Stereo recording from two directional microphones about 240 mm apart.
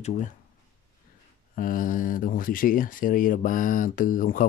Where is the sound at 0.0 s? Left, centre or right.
Left.